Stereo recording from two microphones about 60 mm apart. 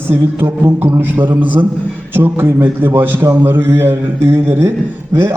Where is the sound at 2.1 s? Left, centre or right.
Right.